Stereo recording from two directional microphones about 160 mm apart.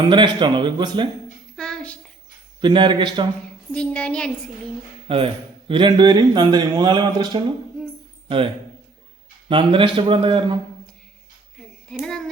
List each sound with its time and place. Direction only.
0.1 s speech: 30° right (ahead or behind)
1.5 s a sound: 5° left (ahead or behind)
2.6 s speech: 30° right (ahead or behind)
3.7 s a woman's voice: 5° left (ahead or behind)
5.0 s speech: 35° right (ahead or behind)
9.5 s speech: 30° right (ahead or behind)
11.5 s a sound: 5° left (ahead or behind)